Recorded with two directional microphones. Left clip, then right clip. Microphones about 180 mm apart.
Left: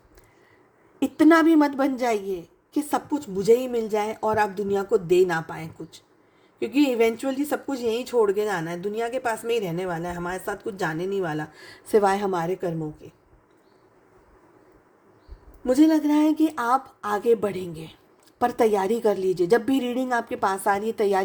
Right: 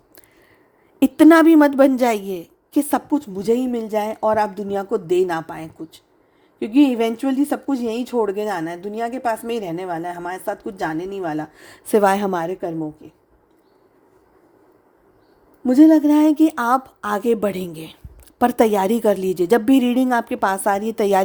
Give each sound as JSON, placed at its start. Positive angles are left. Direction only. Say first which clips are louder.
{"t": 0.9, "sound": "speech", "louder": "right 6 dB", "side_deg": -45}
{"t": 15.6, "sound": "a woman's voice", "louder": "right 7 dB", "side_deg": -35}